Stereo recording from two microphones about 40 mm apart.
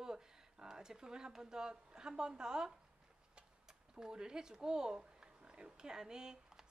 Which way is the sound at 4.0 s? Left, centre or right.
Centre.